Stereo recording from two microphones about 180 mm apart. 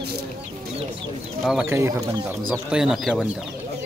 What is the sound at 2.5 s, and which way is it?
Speech, 5° right (ahead or behind).